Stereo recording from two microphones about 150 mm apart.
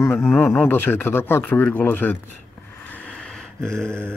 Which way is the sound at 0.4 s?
15° left (ahead or behind).